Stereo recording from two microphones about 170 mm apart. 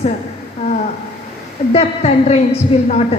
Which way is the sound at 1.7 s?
40° left (ahead or behind).